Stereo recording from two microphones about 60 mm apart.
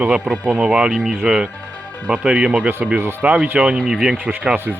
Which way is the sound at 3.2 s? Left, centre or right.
Right.